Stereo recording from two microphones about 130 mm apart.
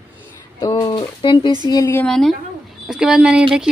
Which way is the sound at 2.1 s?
5° left (ahead or behind).